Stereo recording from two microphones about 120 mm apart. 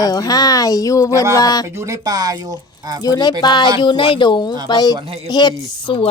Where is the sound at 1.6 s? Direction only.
25° right (ahead or behind).